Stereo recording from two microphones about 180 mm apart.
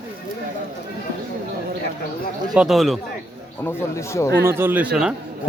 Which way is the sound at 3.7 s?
15° left (ahead or behind).